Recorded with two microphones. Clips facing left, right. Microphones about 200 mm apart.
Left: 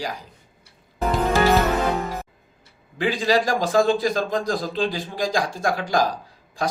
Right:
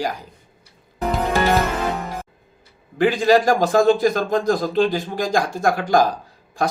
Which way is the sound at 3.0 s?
50° right (ahead or behind).